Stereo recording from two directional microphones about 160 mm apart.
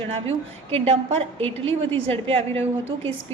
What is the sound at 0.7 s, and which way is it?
Speech, 40° right (ahead or behind).